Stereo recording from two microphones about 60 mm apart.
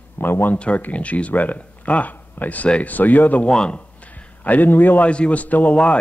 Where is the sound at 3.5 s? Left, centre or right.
Centre; by 5.1 s left.